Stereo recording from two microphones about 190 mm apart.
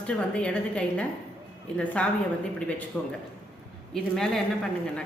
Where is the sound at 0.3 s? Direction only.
5° left (ahead or behind).